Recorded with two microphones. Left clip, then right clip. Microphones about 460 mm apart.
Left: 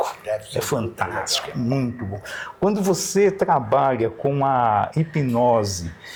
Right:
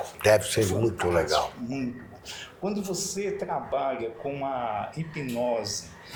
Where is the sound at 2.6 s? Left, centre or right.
Left.